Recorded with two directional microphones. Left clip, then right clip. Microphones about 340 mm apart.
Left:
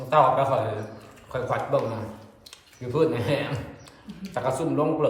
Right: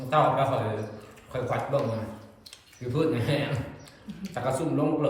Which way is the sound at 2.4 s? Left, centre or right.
Centre.